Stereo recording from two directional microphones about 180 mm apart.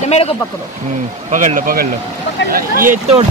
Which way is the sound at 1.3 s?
45° right (ahead or behind).